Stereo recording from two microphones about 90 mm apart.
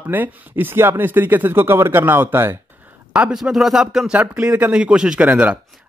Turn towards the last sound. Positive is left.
turn(degrees=-15)  # may be behind; listen again after turning